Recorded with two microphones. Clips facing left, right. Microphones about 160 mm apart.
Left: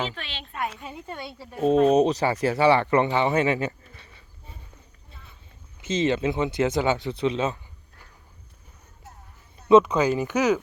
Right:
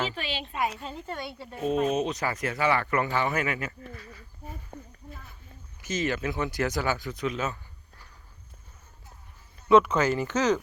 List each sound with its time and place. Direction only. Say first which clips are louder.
0.0 s a woman's voice: right 1 dB; 5° right (ahead or behind)
0.9 s speech: even; 15° left (ahead or behind)
1.4 s speech: left 3 dB; 5° left (ahead or behind)
1.9 s speech: left 8 dB; 35° left (ahead or behind)
4.7 s a sound: right 11 dB; 65° right (ahead or behind)
5.8 s speech: left 6 dB; 25° left (ahead or behind)
9.6 s speech: left 3 dB; 20° left (ahead or behind)